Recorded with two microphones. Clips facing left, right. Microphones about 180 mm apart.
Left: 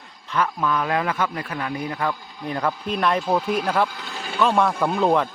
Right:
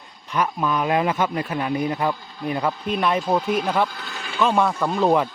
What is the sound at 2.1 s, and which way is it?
Speech, 15° left (ahead or behind).